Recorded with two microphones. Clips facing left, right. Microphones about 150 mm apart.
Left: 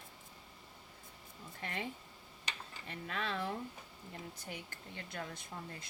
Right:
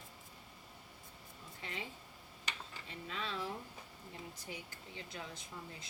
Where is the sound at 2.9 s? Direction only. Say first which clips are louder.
Left 4 dB; 60° left (ahead or behind).